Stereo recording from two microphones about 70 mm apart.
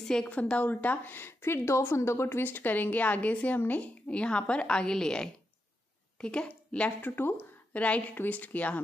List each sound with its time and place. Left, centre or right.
0.0 s a woman's voice: centre; by 7.8 s left
7.8 s a woman's voice: left